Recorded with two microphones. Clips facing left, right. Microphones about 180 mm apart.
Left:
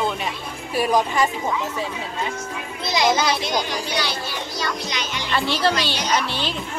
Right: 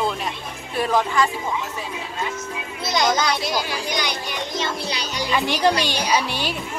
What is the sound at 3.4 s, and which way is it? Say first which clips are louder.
A child's voice: left 1 dB; 5° right (ahead or behind).